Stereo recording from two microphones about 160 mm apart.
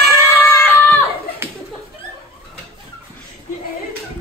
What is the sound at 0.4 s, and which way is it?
Screaming, 20° left (ahead or behind).